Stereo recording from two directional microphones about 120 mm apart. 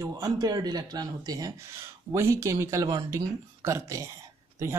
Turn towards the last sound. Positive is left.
turn(degrees=-25)  # may be behind; listen again after turning